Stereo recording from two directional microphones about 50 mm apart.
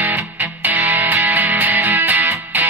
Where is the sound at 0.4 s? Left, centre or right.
Right.